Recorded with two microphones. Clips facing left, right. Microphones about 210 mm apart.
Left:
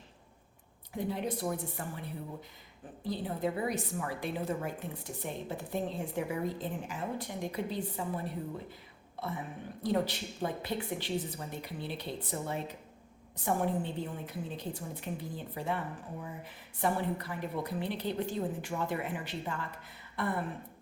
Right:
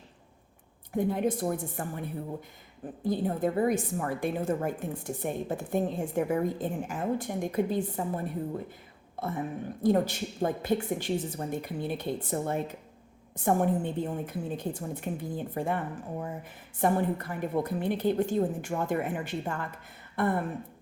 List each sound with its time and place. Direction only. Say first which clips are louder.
0.9 s a woman's voice: right 7 dB; 50° right (ahead or behind)
9.8 s a woman's voice: right 6 dB; 50° right (ahead or behind)